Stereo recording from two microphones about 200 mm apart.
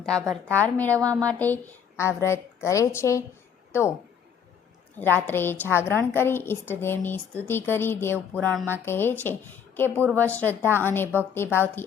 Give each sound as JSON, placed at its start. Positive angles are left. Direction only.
{"t": 0.5, "sound": "a woman's voice", "side_deg": 10}
{"t": 0.9, "sound": "speech", "side_deg": -15}
{"t": 1.2, "sound": "a woman's voice", "side_deg": 5}
{"t": 4.9, "sound": "a woman's voice", "side_deg": 10}